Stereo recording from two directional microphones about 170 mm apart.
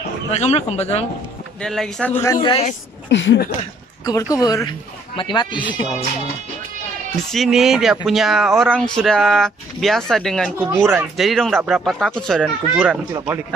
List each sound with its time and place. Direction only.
0.3 s a man's voice: 40° left (ahead or behind)
1.6 s speech: 5° left (ahead or behind)
2.4 s a man's voice: 35° left (ahead or behind)
3.1 s speech: 90° left
4.0 s speech: 20° left (ahead or behind)
7.2 s speech: centre (ahead or behind)
12.7 s speech: 5° right (ahead or behind)